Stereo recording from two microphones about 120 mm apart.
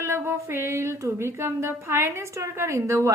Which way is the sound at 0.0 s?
20° right (ahead or behind).